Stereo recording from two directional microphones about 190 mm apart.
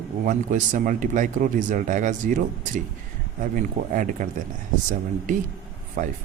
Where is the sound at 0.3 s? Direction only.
40° right (ahead or behind).